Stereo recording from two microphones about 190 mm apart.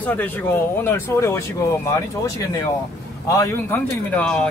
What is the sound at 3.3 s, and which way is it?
Speech, 15° left (ahead or behind).